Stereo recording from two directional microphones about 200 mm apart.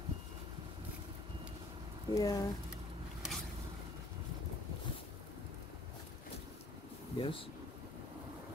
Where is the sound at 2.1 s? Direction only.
15° left (ahead or behind).